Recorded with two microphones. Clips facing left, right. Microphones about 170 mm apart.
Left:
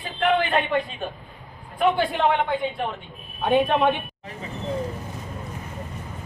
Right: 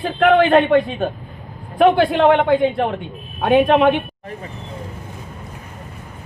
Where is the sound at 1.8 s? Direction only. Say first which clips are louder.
Right 8 dB; 80° right.